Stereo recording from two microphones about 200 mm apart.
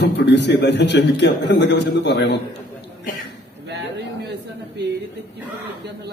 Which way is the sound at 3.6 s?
55° right (ahead or behind).